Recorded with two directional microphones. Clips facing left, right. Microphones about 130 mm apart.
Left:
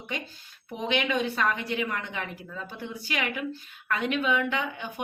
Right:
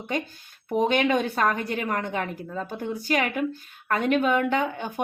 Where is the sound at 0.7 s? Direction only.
45° right (ahead or behind).